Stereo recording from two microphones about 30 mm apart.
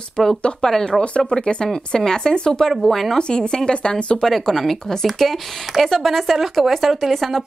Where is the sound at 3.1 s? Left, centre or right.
Left.